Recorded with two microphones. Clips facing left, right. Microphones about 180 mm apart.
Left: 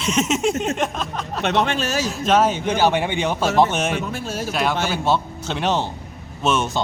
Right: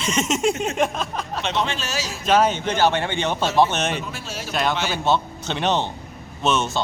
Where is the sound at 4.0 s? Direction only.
50° left (ahead or behind).